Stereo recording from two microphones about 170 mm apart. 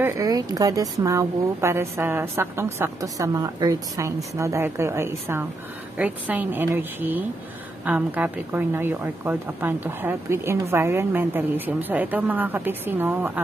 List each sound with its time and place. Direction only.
0.0 s a woman's voice: 20° right (ahead or behind)